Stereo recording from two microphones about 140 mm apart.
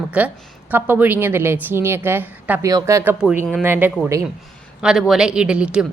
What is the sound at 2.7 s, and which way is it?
Speech, 25° right (ahead or behind).